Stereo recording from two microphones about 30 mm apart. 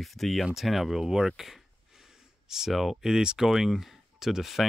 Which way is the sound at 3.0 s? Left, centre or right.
Centre.